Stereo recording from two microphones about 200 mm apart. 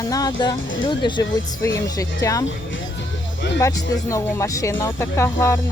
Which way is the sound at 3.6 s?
15° left (ahead or behind).